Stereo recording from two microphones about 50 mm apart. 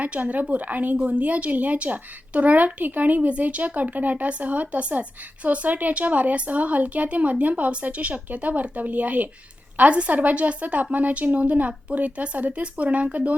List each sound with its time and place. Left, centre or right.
0.0 s a woman's voice: right